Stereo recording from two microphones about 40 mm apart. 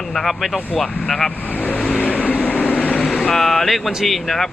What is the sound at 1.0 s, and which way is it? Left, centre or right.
Speech, centre.